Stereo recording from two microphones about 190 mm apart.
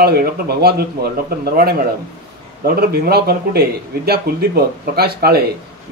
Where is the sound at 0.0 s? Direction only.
55° right (ahead or behind).